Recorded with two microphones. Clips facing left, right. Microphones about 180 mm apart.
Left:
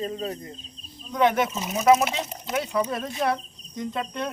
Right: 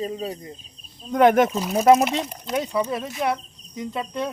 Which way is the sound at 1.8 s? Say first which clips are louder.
Right 3 dB; 35° right (ahead or behind).